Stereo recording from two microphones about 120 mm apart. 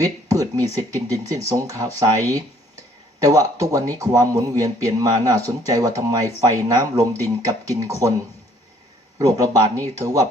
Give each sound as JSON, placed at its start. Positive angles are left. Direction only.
{"t": 0.0, "sound": "speech", "side_deg": -30}
{"t": 9.1, "sound": "speech", "side_deg": -30}